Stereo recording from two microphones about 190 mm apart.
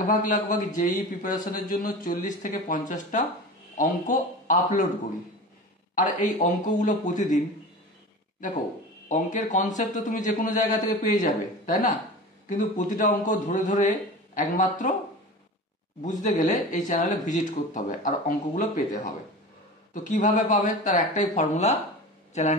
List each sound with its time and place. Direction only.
0.0 s a man's voice: 45° left (ahead or behind)
5.9 s a man's voice: 40° left (ahead or behind)
9.1 s a man's voice: 40° left (ahead or behind)
16.0 s a man's voice: 40° left (ahead or behind)
19.9 s a man's voice: 40° left (ahead or behind)